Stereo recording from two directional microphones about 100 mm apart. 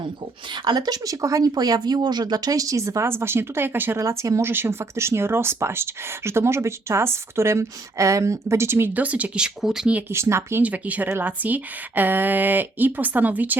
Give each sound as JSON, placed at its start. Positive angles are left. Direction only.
{"t": 0.5, "sound": "speech", "side_deg": -45}
{"t": 10.1, "sound": "speech", "side_deg": -25}
{"t": 10.6, "sound": "speech", "side_deg": -15}